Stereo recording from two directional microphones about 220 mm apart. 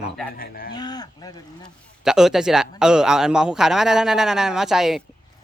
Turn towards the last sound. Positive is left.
turn(degrees=0)  # may be behind; listen again after turning